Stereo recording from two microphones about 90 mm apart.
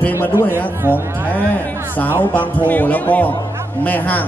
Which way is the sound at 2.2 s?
20° left (ahead or behind).